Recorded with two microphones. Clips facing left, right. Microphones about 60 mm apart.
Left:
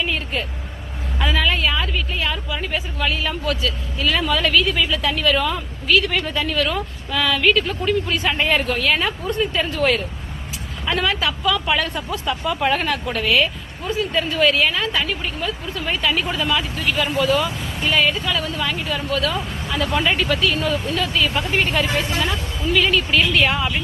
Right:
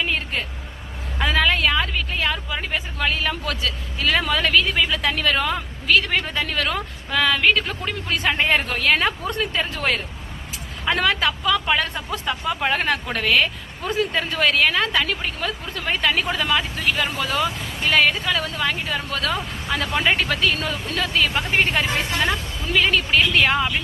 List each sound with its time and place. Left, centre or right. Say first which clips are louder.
0.0 s vehicle: left 1 dB; right
1.2 s speech: right 1 dB; right
4.9 s a woman's voice: left 2 dB; right
8.4 s speech: left 1 dB; right
9.5 s speech: left 4 dB; right
10.8 s speech: right 1 dB; right
11.6 s speech: left 1 dB; right
12.5 s speech: left 3 dB; centre
12.8 s a woman's voice: even; right
21.5 s speech: right 1 dB; right
23.1 s speech: right 2 dB; right